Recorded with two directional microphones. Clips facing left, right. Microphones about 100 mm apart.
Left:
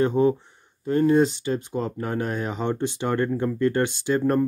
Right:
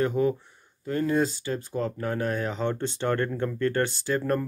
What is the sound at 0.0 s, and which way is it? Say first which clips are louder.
Speech: left 4 dB; 25° left (ahead or behind).